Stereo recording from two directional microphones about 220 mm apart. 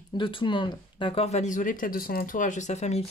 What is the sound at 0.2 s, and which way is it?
Speech, 20° left (ahead or behind).